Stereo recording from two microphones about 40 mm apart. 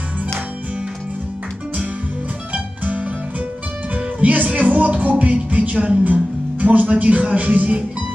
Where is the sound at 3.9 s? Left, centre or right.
Right.